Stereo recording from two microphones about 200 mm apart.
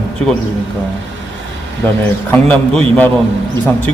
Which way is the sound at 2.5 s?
10° left (ahead or behind).